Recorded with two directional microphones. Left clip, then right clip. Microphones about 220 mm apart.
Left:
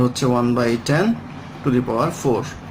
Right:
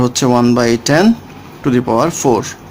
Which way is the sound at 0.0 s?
45° right (ahead or behind).